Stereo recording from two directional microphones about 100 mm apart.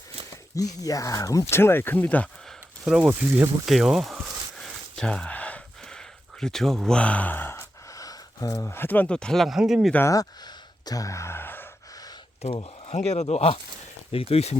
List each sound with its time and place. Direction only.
0.5 s speech: 35° left (ahead or behind); by 2.3 s 15° left (ahead or behind)
2.8 s speech: 5° right (ahead or behind)
3.1 s speech: 25° right (ahead or behind)
3.7 s a sound: 5° right (ahead or behind); by 7.7 s 25° left (ahead or behind)
7.9 s a sound: 35° left (ahead or behind)
8.6 s speech: 25° left (ahead or behind); by 9.9 s 5° right (ahead or behind)
10.1 s speech: 40° left (ahead or behind); by 11.7 s 20° left (ahead or behind)
12.4 s speech: 85° left